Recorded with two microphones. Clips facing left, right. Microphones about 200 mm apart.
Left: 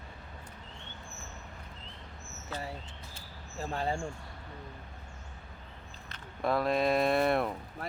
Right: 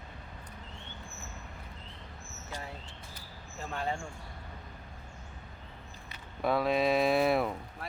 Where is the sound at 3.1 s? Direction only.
35° left (ahead or behind).